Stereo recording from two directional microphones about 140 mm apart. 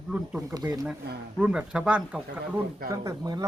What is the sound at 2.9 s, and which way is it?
Speech, 25° right (ahead or behind).